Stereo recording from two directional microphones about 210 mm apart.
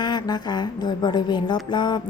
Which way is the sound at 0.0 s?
20° left (ahead or behind).